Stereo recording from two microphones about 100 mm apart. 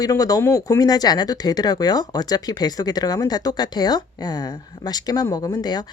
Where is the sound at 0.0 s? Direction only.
35° left (ahead or behind).